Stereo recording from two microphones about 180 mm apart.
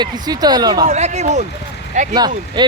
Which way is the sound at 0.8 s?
40° right (ahead or behind).